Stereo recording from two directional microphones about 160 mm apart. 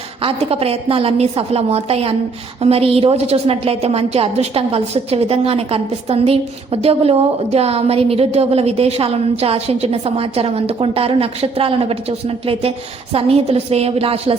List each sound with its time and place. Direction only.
0.2 s a woman's voice: 35° right (ahead or behind)